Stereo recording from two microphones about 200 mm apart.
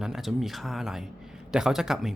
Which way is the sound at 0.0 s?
Centre (ahead or behind).